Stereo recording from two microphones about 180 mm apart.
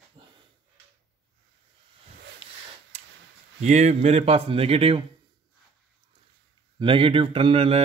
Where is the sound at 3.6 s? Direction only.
40° right (ahead or behind).